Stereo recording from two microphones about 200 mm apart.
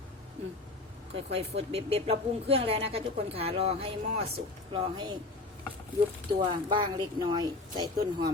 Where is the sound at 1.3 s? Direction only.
30° right (ahead or behind).